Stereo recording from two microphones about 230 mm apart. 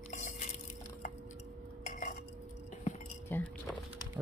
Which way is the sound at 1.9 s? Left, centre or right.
Left.